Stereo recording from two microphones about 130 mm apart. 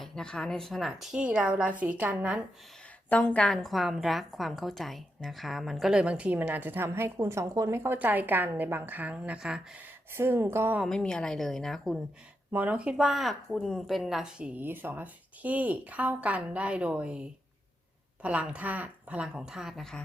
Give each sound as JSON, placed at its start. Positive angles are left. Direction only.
{"t": 0.0, "sound": "a woman's voice", "side_deg": 5}
{"t": 3.1, "sound": "a woman's voice", "side_deg": 10}
{"t": 10.2, "sound": "speech", "side_deg": -20}
{"t": 10.8, "sound": "a woman's voice", "side_deg": 5}
{"t": 12.5, "sound": "a woman's voice", "side_deg": -10}